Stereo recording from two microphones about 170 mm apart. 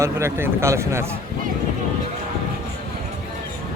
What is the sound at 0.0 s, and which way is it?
Speech, 15° right (ahead or behind).